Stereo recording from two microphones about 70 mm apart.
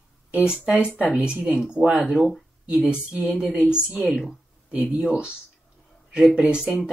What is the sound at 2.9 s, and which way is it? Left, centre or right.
Speech, centre.